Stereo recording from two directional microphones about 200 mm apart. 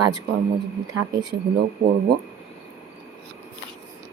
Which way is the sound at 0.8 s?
90° right.